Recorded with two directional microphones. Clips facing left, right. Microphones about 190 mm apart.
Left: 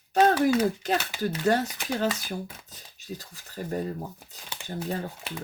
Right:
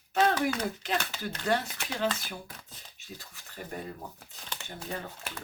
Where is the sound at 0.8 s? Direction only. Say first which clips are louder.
Left 6 dB; 40° left (ahead or behind).